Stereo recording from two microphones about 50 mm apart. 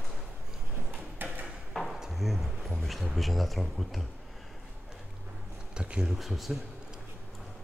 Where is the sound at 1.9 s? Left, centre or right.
Centre.